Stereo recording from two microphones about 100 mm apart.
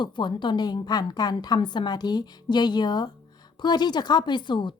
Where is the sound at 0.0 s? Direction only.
50° left (ahead or behind).